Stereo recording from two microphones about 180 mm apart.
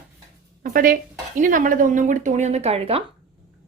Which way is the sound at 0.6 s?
50° right (ahead or behind).